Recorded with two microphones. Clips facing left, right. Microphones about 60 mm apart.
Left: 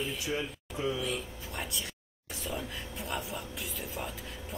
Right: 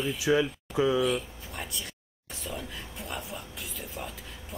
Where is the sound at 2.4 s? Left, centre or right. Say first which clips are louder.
Even; centre.